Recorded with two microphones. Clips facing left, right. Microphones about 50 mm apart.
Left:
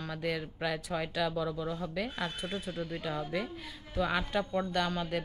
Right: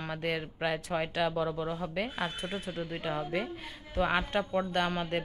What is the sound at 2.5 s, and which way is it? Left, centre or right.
A woman's voice, centre.